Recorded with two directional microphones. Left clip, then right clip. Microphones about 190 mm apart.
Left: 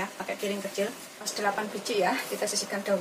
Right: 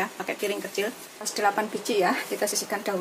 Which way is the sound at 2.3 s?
35° right (ahead or behind).